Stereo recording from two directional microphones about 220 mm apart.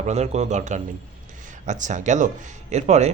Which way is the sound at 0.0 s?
30° right (ahead or behind).